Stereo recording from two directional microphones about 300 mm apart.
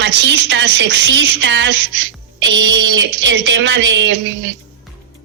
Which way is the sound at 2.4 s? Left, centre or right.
Right.